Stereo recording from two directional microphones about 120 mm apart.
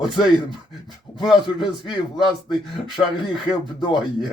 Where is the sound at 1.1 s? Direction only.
40° left (ahead or behind).